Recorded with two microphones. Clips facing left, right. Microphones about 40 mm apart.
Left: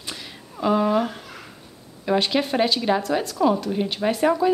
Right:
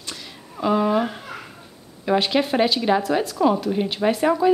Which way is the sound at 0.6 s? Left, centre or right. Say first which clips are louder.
Even; centre.